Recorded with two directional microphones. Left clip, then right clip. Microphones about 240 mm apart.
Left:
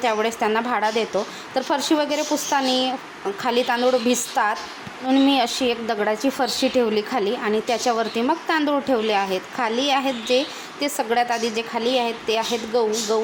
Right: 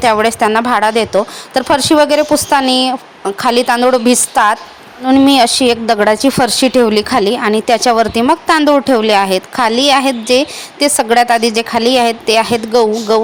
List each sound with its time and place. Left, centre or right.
0.0 s a woman's voice: right